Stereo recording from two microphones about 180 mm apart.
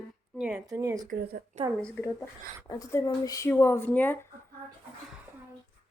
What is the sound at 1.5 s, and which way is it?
Speech, 40° right (ahead or behind).